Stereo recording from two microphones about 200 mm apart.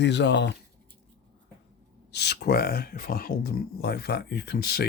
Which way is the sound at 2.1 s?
55° left (ahead or behind).